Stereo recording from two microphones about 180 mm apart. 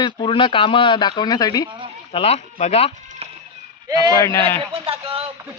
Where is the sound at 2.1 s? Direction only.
35° left (ahead or behind).